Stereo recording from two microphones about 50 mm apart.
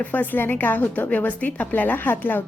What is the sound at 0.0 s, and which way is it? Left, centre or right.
A woman's voice, left.